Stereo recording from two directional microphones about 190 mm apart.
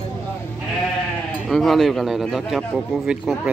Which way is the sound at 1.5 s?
Centre (ahead or behind).